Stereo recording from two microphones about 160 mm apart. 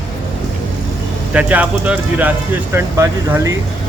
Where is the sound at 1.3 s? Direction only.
10° right (ahead or behind).